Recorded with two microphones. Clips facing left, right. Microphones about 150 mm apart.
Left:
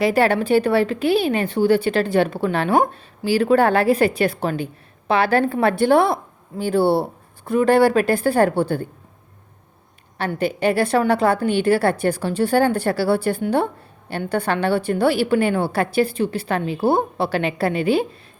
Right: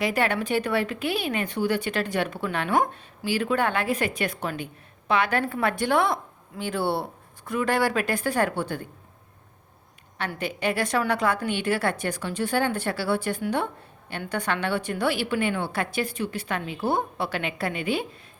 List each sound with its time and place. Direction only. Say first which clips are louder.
0.0 s a woman's voice: left 8 dB; 35° left (ahead or behind)
10.2 s a woman's voice: left 8 dB; 35° left (ahead or behind)